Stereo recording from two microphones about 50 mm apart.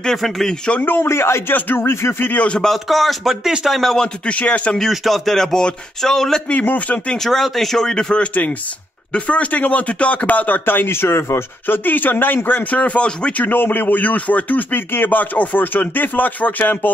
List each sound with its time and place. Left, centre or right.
1.0 s a man's voice: left
1.5 s speech: left
1.9 s speech: left
2.1 s a man's voice: left
2.6 s speech: centre
3.4 s speech: centre
3.7 s speech: centre
4.3 s a man's voice: left
4.7 s speech: centre
6.5 s speech: left
7.2 s speech: centre; by 11.4 s left
11.6 s a man's voice: left
13.5 s speech: left